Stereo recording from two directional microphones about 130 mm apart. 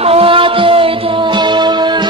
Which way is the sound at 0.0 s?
50° right (ahead or behind).